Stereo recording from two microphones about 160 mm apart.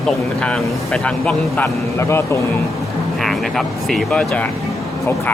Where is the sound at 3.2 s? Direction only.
Centre (ahead or behind).